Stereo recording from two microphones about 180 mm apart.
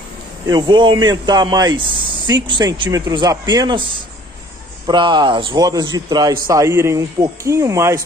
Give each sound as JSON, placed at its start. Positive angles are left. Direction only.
{"t": 0.5, "sound": "speech", "side_deg": -25}